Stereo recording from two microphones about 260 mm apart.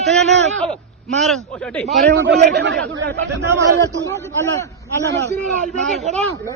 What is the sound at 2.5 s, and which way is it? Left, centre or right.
Speech, right.